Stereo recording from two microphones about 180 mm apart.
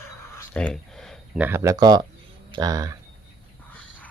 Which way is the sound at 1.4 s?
15° right (ahead or behind).